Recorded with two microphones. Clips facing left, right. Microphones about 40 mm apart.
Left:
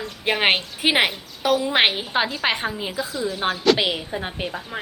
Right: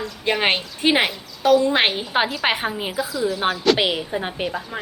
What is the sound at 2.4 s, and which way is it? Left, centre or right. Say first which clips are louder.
A woman's voice: right 2 dB; centre.